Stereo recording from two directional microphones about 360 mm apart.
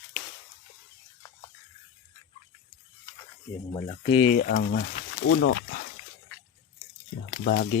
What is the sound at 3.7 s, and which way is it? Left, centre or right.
Speech, centre.